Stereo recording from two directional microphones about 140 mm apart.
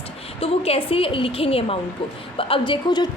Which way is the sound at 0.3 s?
45° left (ahead or behind).